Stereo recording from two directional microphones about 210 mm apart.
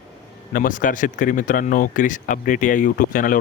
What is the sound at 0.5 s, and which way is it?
Speech, 40° left (ahead or behind).